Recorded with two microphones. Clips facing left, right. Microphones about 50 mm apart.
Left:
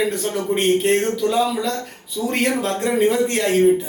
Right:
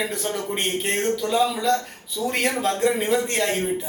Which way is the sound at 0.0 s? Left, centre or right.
Centre.